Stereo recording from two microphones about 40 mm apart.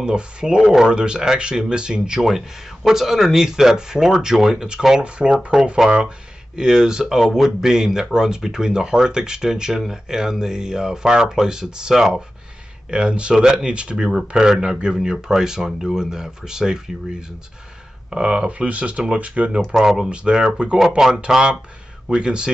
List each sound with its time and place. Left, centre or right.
0.0 s speech: right
2.2 s speech: centre
5.0 s speech: right
12.9 s speech: right
18.1 s speech: centre
18.7 s speech: right
19.8 s speech: centre
20.1 s speech: right